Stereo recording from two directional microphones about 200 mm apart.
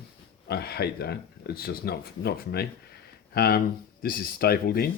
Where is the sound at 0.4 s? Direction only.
50° left (ahead or behind).